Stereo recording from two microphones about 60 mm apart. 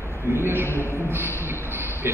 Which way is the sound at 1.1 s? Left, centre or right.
Right.